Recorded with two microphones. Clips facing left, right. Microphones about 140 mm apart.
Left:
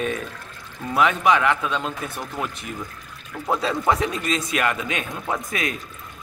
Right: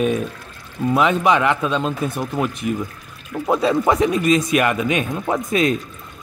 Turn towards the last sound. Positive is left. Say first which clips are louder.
# right 8 dB
turn(degrees=-25)  # may be behind; listen again after turning